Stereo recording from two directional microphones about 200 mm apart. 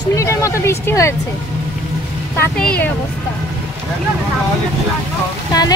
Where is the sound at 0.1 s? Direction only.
15° left (ahead or behind).